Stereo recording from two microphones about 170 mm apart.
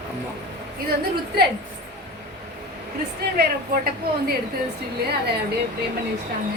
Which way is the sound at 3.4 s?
65° right (ahead or behind).